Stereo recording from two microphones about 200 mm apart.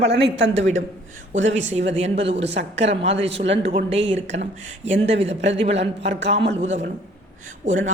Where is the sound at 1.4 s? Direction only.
70° right (ahead or behind).